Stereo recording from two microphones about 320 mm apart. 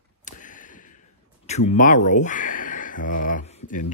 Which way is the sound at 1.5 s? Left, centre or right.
Left.